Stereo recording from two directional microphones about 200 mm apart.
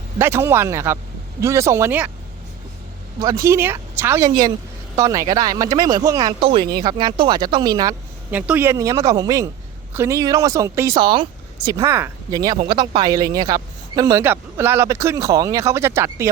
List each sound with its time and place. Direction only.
0.2 s a man's voice: 15° right (ahead or behind)
3.2 s a man's voice: 20° right (ahead or behind)